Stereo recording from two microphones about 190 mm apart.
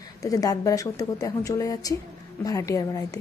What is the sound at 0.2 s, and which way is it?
Speech, 20° left (ahead or behind).